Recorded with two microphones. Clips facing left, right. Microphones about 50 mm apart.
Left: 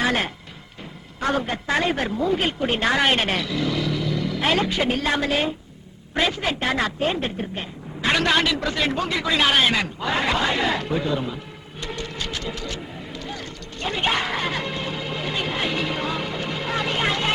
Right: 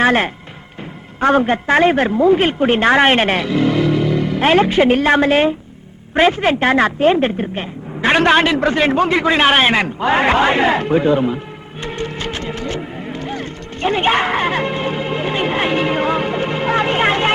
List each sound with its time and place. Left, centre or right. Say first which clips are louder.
0.0 s a woman's voice: right 8 dB; right
11.8 s music: right 7 dB; right